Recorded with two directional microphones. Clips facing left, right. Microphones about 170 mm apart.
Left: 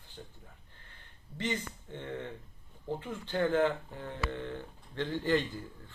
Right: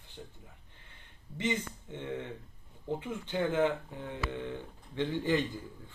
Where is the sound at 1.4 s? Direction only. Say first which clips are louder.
Right 2 dB; 20° right (ahead or behind).